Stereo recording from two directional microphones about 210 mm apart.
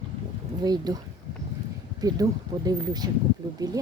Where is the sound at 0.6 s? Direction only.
20° right (ahead or behind).